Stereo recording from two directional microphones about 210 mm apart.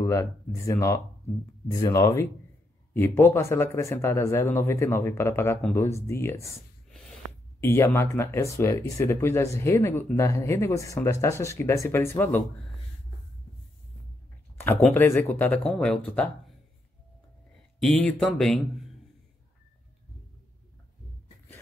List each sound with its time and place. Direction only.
0.0 s speech: 15° left (ahead or behind)
7.6 s speech: 10° left (ahead or behind)
14.6 s speech: 5° left (ahead or behind)
17.7 s speech: centre (ahead or behind)